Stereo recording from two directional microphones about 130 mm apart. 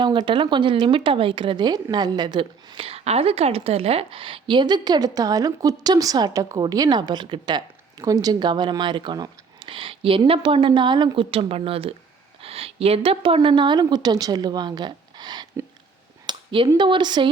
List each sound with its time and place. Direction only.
0.0 s speech: 35° right (ahead or behind)
16.2 s a sound: 35° right (ahead or behind)
16.7 s speech: 35° right (ahead or behind)